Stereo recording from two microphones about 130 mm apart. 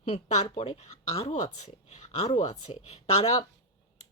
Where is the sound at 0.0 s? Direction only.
65° left (ahead or behind).